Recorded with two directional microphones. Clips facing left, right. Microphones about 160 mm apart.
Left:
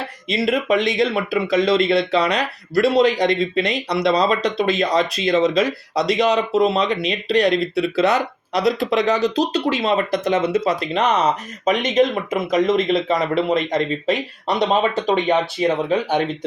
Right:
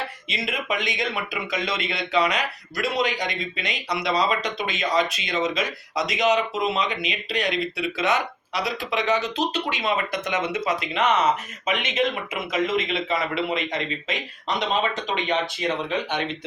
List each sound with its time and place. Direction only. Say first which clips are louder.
0.3 s speech: left 11 dB; 35° left (ahead or behind)